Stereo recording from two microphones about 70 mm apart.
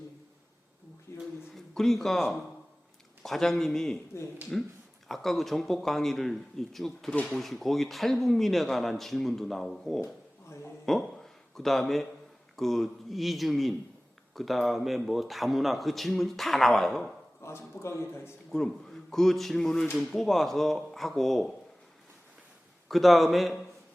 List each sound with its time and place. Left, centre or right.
1.1 s a sound: left
1.5 s speech: centre
4.1 s a man's voice: left
5.0 s speech: centre
7.1 s speech: centre
7.3 s speech: centre
10.8 s a sound: centre
12.5 s speech: centre
17.4 s a man's voice: left
18.5 s speech: centre
22.9 s speech: centre